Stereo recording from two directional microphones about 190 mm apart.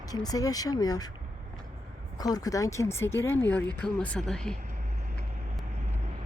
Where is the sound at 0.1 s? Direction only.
20° left (ahead or behind).